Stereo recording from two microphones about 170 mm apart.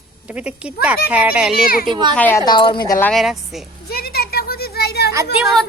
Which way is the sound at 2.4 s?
25° left (ahead or behind).